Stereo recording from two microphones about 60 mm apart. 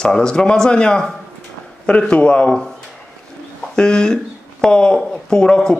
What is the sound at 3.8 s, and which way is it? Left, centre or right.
Speech, centre.